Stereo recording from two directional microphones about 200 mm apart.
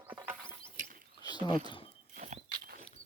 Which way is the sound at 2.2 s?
40° right (ahead or behind).